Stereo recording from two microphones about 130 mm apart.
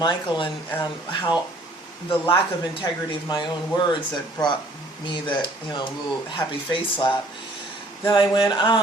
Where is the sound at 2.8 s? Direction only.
35° left (ahead or behind).